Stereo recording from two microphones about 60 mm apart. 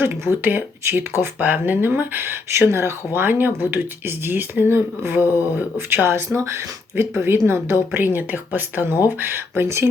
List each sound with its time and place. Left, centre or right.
0.0 s speech: right